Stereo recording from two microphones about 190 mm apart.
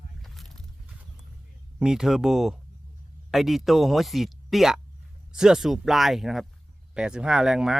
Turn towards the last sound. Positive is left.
turn(degrees=-5)  # may be behind; listen again after turning